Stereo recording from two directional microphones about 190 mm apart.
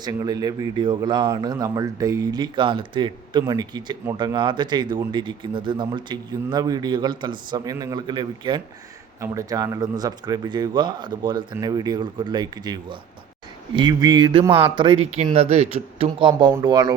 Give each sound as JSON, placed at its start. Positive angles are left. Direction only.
{"t": 0.0, "sound": "speech", "side_deg": -20}